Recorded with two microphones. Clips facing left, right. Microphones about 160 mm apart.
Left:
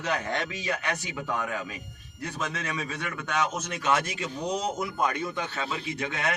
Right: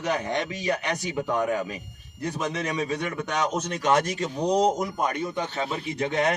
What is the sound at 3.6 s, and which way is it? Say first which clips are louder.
A man's voice: right 4 dB; 40° right (ahead or behind).